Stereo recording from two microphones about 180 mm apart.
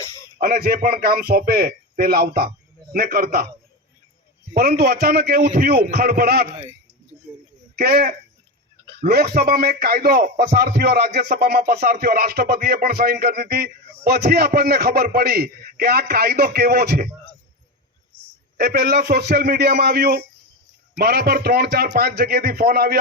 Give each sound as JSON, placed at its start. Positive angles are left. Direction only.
{"t": 0.3, "sound": "a man's voice", "side_deg": -55}
{"t": 4.5, "sound": "speech", "side_deg": -55}
{"t": 7.8, "sound": "speech", "side_deg": -55}
{"t": 18.5, "sound": "speech", "side_deg": -55}